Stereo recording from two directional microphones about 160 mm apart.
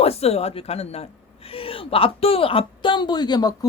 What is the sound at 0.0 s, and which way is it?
A woman's voice, 40° left (ahead or behind).